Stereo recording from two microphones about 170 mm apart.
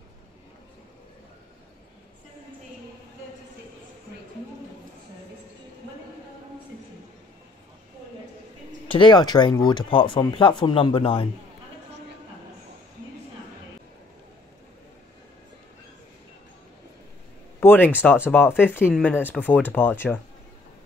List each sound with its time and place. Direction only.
8.8 s speech: 30° left (ahead or behind)
17.6 s speech: 10° left (ahead or behind)